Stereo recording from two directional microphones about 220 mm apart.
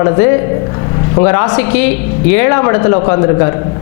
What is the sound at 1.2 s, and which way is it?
Speech, 20° left (ahead or behind).